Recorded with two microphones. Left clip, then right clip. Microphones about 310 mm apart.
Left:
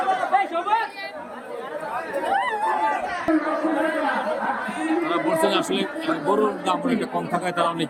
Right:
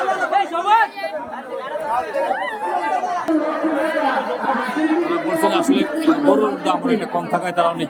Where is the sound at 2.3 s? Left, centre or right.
Left.